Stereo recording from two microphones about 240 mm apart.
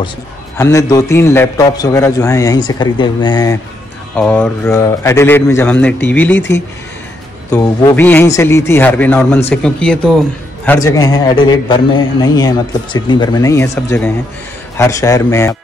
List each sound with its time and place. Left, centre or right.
0.6 s a man's voice: centre
4.1 s a man's voice: centre
7.5 s a man's voice: centre